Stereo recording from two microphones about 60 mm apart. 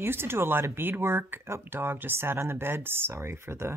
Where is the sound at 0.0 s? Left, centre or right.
Right.